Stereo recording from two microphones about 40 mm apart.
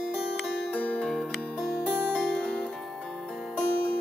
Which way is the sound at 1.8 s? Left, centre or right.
Centre.